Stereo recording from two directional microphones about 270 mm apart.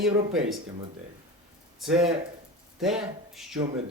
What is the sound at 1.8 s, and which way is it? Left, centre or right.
Speech, centre.